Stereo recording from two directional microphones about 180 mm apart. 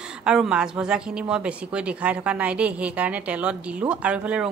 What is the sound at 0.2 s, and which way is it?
A woman's voice, 5° right (ahead or behind).